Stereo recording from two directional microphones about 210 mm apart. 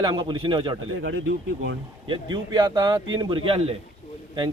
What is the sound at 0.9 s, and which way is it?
Speech, 65° right (ahead or behind).